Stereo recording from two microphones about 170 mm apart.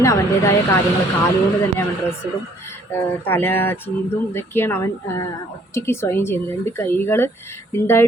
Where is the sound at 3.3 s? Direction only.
10° left (ahead or behind).